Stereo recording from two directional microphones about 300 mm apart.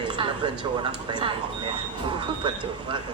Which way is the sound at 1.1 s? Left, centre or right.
Centre.